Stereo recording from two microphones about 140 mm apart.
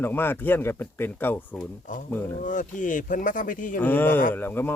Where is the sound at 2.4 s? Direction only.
65° left (ahead or behind).